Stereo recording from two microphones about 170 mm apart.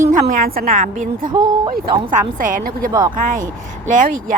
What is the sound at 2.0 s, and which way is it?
A woman's voice, 55° right (ahead or behind).